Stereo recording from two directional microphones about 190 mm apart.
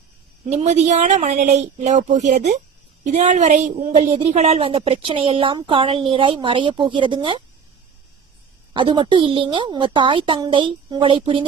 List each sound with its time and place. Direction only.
0.5 s a woman's voice: 35° right (ahead or behind)
8.7 s a woman's voice: 25° right (ahead or behind)